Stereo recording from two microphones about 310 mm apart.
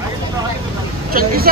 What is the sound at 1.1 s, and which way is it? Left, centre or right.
Speech, right.